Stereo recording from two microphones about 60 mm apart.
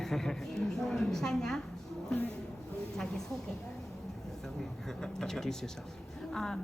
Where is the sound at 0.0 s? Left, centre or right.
Centre.